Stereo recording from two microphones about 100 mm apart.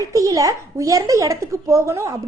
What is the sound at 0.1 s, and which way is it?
A woman's voice, 35° right (ahead or behind).